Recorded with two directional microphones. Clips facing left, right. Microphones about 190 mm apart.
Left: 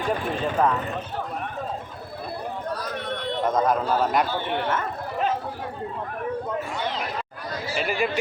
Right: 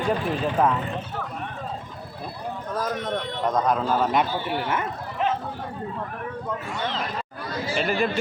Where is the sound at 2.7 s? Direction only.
45° right (ahead or behind).